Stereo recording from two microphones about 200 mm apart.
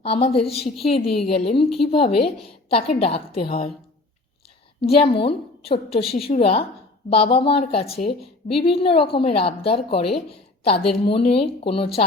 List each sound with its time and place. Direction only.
0.0 s a woman's voice: 30° left (ahead or behind)
4.8 s a woman's voice: 30° left (ahead or behind)